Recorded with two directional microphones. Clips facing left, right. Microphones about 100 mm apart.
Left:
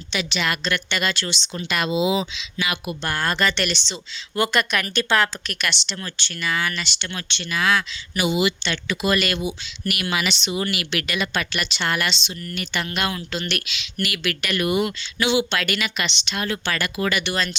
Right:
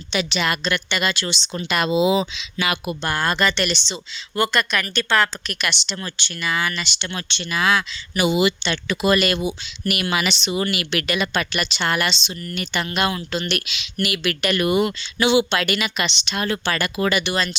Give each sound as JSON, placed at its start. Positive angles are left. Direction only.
{"t": 0.1, "sound": "speech", "side_deg": -25}
{"t": 0.9, "sound": "speech", "side_deg": -10}
{"t": 1.5, "sound": "speech", "side_deg": -35}
{"t": 3.0, "sound": "speech", "side_deg": -20}
{"t": 3.5, "sound": "speech", "side_deg": -5}
{"t": 7.1, "sound": "speech", "side_deg": -25}
{"t": 8.1, "sound": "speech", "side_deg": -45}
{"t": 8.7, "sound": "speech", "side_deg": -30}
{"t": 10.0, "sound": "speech", "side_deg": -35}
{"t": 14.3, "sound": "speech", "side_deg": -35}
{"t": 15.4, "sound": "speech", "side_deg": -15}
{"t": 17.3, "sound": "speech", "side_deg": -10}